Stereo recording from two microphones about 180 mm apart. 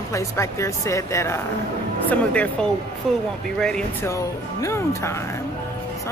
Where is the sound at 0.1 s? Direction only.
15° left (ahead or behind).